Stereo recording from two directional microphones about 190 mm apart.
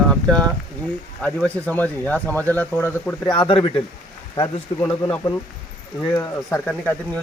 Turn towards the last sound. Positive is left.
turn(degrees=10)  # may be behind; listen again after turning